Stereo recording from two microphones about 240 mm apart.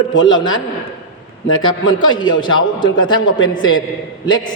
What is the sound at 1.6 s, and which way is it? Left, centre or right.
A man's voice, centre.